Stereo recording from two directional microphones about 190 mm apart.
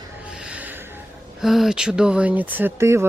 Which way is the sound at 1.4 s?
Centre (ahead or behind).